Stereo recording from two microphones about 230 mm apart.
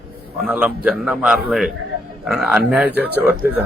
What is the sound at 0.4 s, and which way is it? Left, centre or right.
A man's voice, centre.